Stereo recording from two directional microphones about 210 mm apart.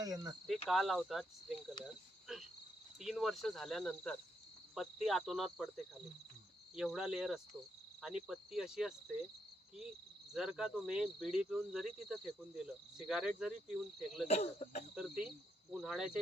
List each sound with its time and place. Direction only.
0.0 s cricket: 15° right (ahead or behind)
0.4 s speech: centre (ahead or behind)
10.3 s speech: centre (ahead or behind)
14.3 s cricket: 30° left (ahead or behind)
14.9 s speech: 5° right (ahead or behind)